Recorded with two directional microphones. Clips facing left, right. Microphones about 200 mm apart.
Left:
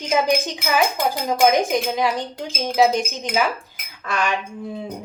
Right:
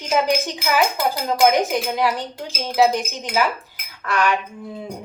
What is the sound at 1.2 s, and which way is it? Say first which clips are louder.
Speech: even; 15° left (ahead or behind).